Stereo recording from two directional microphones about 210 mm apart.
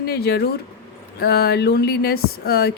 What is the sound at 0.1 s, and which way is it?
Speech, 50° left (ahead or behind).